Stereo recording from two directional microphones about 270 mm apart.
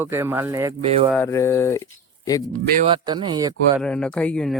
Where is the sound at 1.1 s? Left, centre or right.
Centre.